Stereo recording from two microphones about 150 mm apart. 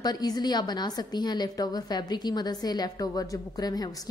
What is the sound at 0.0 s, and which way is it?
A woman's voice, 25° left (ahead or behind).